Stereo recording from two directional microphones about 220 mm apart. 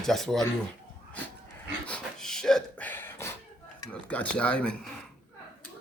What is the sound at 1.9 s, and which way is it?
Pant, centre (ahead or behind).